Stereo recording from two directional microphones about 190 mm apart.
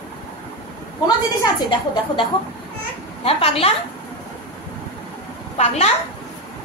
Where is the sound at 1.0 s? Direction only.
25° left (ahead or behind).